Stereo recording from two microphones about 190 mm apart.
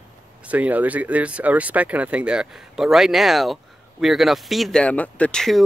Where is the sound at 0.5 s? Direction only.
10° right (ahead or behind).